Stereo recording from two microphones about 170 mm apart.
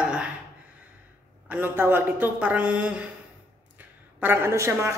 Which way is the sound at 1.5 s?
10° right (ahead or behind).